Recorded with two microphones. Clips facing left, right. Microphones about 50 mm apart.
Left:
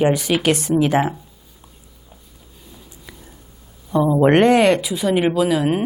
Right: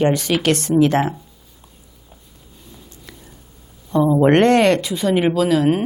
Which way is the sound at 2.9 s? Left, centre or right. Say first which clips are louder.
Even; centre.